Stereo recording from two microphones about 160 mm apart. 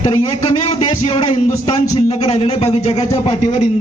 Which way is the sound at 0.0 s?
45° left (ahead or behind).